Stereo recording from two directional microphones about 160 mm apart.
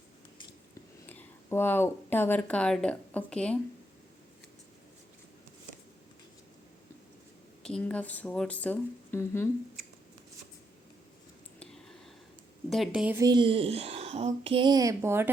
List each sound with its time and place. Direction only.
1.0 s speech: 15° left (ahead or behind)
7.6 s speech: 5° left (ahead or behind)
11.6 s a sound: 5° left (ahead or behind)
12.7 s speech: 5° right (ahead or behind)
13.1 s a woman's voice: 25° right (ahead or behind)